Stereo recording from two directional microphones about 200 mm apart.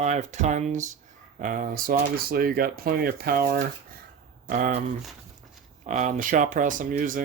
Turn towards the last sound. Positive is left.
turn(degrees=-40)  # may be behind; listen again after turning